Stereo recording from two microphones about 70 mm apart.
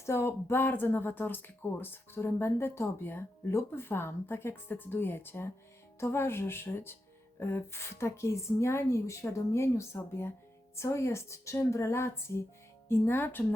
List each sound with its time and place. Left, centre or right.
0.0 s speech: left